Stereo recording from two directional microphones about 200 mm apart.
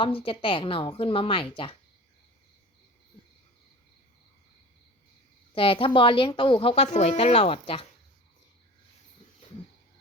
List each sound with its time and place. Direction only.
0.2 s a woman's voice: 25° left (ahead or behind)
5.5 s a woman's voice: 25° left (ahead or behind)